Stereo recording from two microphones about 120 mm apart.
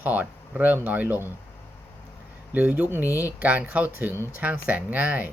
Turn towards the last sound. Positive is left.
turn(degrees=-15)  # may be behind; listen again after turning